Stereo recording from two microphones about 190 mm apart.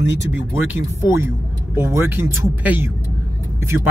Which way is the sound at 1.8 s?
15° right (ahead or behind).